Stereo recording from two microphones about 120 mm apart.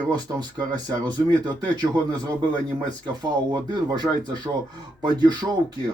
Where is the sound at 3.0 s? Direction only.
35° right (ahead or behind).